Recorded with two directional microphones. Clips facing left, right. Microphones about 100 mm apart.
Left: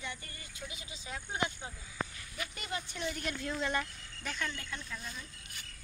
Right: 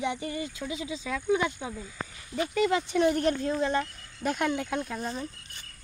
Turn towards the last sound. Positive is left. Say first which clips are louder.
# right 13 dB
turn(degrees=-55)  # may be behind; listen again after turning